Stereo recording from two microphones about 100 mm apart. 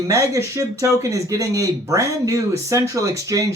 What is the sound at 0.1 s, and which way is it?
Speech, 30° right (ahead or behind).